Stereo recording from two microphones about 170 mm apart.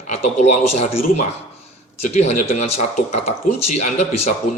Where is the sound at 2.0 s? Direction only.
40° left (ahead or behind).